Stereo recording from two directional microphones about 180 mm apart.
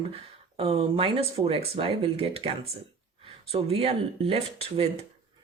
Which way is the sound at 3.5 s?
35° right (ahead or behind).